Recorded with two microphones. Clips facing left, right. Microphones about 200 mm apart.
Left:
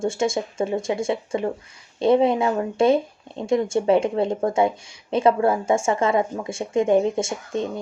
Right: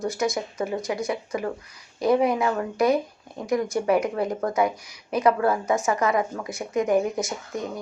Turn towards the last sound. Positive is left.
turn(degrees=25)  # may be behind; listen again after turning